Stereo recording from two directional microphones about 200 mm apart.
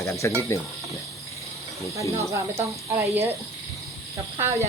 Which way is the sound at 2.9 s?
10° right (ahead or behind).